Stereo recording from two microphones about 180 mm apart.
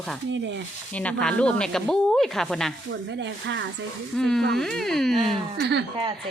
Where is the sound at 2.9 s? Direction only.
90° right.